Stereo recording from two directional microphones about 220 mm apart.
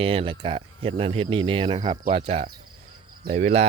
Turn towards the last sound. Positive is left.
turn(degrees=-35)  # may be behind; listen again after turning